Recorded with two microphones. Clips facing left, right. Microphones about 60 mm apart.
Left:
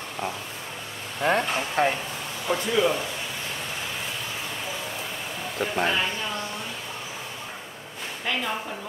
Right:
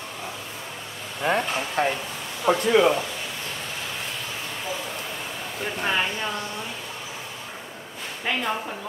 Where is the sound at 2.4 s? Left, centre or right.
Right.